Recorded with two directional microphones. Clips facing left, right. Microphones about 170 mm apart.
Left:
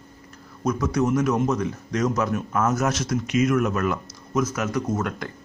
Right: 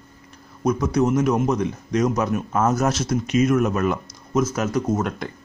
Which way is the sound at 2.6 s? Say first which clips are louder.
Right 3 dB; 30° right (ahead or behind).